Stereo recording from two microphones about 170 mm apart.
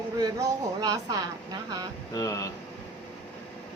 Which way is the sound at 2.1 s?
20° left (ahead or behind).